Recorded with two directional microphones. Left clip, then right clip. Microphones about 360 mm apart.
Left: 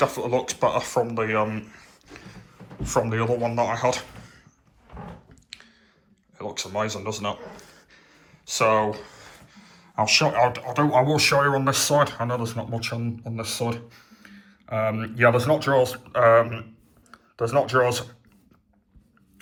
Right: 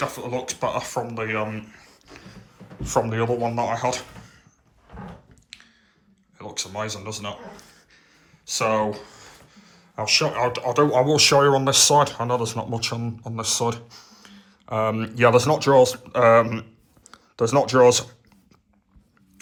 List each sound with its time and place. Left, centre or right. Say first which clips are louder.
0.0 s speech: left 5 dB; centre
5.5 s chewing: left 1 dB; centre
6.3 s speech: left 2 dB; centre
13.7 s a sound: right 4 dB; centre
14.7 s speech: right 2 dB; right
14.9 s speech: right 3 dB; centre